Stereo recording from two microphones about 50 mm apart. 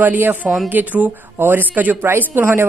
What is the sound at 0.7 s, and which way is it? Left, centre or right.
Speech, right.